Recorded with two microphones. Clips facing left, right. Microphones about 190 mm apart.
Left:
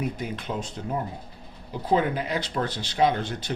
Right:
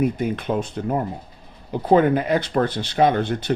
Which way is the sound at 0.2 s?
55° right (ahead or behind).